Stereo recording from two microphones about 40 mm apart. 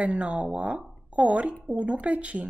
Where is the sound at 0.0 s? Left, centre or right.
Right.